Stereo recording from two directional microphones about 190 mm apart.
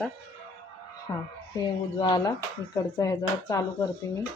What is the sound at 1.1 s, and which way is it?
Speech, 20° left (ahead or behind).